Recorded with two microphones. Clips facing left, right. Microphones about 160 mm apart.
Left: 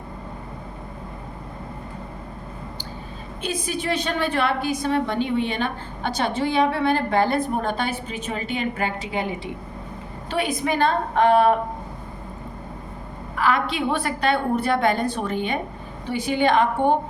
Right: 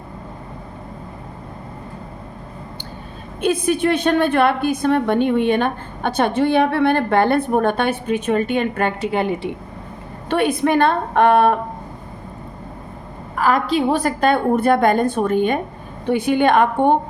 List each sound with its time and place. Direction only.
3.4 s a woman's voice: 55° right (ahead or behind)
13.3 s a woman's voice: 45° right (ahead or behind)